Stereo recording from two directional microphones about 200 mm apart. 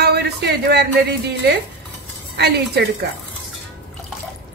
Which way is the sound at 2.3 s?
55° right (ahead or behind).